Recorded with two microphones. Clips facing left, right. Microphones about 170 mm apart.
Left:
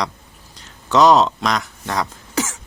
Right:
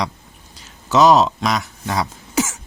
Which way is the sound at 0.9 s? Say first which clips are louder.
Even; 5° right (ahead or behind).